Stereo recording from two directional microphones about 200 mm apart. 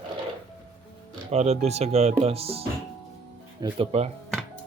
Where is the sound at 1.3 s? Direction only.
30° right (ahead or behind).